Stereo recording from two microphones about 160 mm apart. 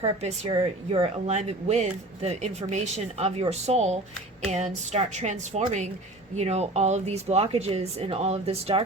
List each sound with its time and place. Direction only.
0.0 s a woman's voice: 40° right (ahead or behind)